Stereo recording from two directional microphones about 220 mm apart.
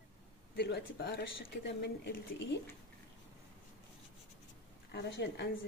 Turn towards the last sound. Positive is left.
turn(degrees=50)  # may be behind; listen again after turning